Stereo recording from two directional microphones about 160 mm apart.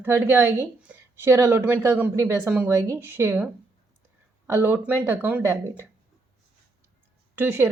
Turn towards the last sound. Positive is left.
turn(degrees=-15)  # may be behind; listen again after turning